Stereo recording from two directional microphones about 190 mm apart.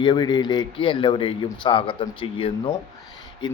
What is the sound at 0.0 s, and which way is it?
Speech, 25° left (ahead or behind).